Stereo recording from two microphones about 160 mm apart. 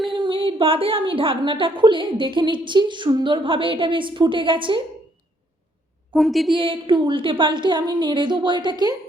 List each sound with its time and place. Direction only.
0.1 s a woman's voice: 30° right (ahead or behind)
6.1 s a woman's voice: centre (ahead or behind)
6.5 s a woman's voice: 30° right (ahead or behind)